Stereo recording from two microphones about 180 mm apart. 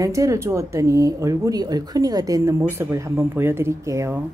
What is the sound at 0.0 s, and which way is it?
Speech, 20° right (ahead or behind).